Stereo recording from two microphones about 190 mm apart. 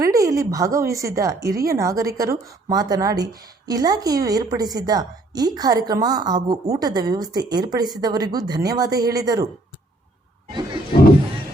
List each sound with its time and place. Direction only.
0.0 s a woman's voice: 15° right (ahead or behind)